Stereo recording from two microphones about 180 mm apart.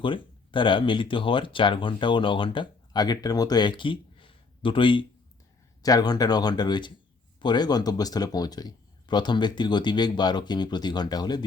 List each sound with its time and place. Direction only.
0.0 s speech: 30° left (ahead or behind)